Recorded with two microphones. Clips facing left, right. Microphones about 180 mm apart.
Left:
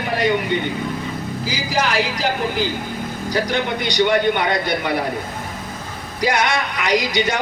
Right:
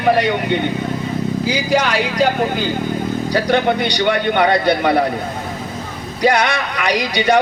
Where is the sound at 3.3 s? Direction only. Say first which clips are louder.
Right 5 dB; 60° right (ahead or behind).